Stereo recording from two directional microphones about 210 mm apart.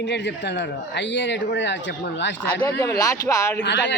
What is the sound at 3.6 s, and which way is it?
Speech, 55° left (ahead or behind).